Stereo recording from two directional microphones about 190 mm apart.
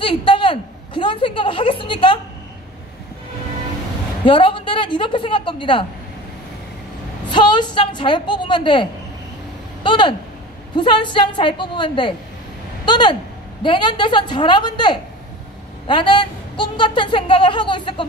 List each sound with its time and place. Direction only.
0.0 s a sound: 25° left (ahead or behind)
4.3 s a woman's voice: 25° left (ahead or behind)
7.2 s a woman's voice: 25° left (ahead or behind)
9.8 s a woman's voice: 25° left (ahead or behind)